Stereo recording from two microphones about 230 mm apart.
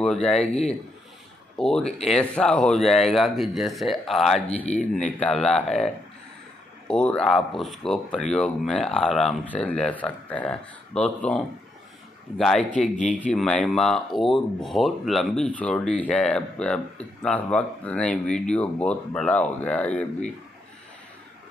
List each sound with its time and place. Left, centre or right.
0.0 s speech: centre
1.6 s speech: centre
4.6 s speech: left
5.2 s speech: centre
6.9 s speech: centre
12.9 s speech: left
13.2 s speech: centre